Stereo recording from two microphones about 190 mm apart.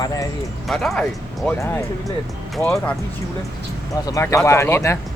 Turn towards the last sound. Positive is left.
turn(degrees=15)  # may be behind; listen again after turning